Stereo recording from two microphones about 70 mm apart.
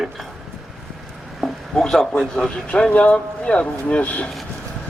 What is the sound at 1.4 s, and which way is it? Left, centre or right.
Speech, centre.